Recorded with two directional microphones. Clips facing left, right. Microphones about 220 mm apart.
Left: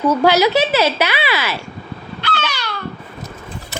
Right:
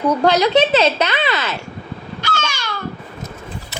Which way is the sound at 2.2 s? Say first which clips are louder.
Left 1 dB; 45° right (ahead or behind).